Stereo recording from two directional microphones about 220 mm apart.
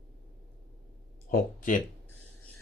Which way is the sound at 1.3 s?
40° left (ahead or behind).